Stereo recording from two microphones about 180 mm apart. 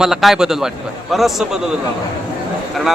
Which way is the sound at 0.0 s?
Centre (ahead or behind).